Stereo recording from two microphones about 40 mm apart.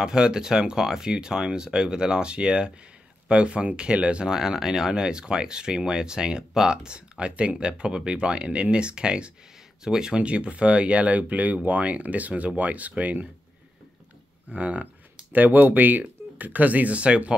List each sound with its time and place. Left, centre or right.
0.0 s speech: centre
4.3 s speech: centre
10.2 s speech: right
14.5 s speech: right
15.3 s speech: right